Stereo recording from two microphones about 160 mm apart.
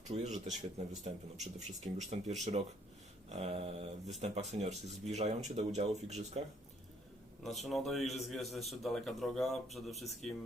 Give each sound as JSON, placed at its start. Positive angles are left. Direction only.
{"t": 0.1, "sound": "speech", "side_deg": -45}
{"t": 7.4, "sound": "a man's voice", "side_deg": 0}